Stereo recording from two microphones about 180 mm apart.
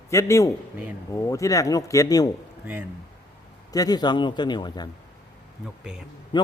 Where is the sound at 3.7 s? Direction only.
20° left (ahead or behind).